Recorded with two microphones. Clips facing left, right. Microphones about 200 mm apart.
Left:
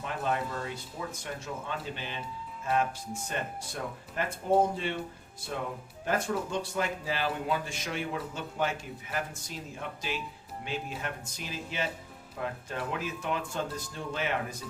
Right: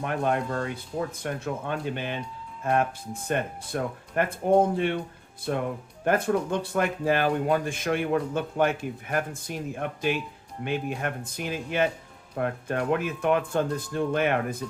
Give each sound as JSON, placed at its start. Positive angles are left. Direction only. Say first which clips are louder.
{"t": 0.0, "sound": "a man's voice", "louder": "right 6 dB", "side_deg": -60}
{"t": 5.5, "sound": "a man's voice", "louder": "right 7 dB", "side_deg": -60}